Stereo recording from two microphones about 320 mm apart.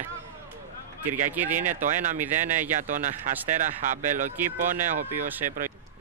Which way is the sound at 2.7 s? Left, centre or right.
Right.